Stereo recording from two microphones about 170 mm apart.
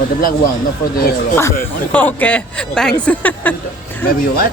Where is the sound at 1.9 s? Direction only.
10° left (ahead or behind).